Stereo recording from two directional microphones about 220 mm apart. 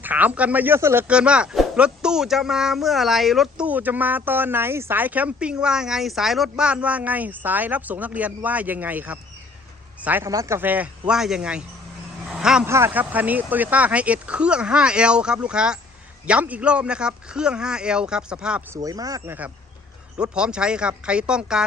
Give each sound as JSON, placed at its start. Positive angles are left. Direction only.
{"t": 0.0, "sound": "speech", "side_deg": -10}
{"t": 18.8, "sound": "speech", "side_deg": -15}